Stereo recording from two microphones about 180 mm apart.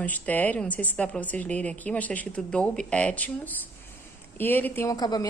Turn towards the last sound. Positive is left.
turn(degrees=20)  # may be behind; listen again after turning